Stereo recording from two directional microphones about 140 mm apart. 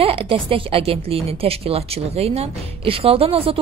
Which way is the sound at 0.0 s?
40° right (ahead or behind).